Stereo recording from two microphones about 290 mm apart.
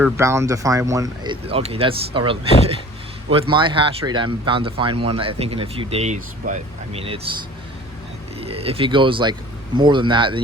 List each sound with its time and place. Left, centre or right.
0.0 s speech: centre
8.4 s speech: centre